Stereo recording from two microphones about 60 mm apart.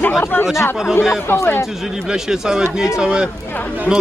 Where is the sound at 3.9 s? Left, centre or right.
Left.